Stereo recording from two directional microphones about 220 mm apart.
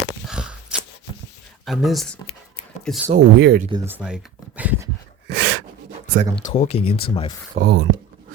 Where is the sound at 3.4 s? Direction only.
45° right (ahead or behind).